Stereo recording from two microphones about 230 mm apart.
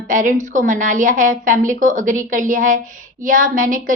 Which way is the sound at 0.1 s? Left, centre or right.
Right.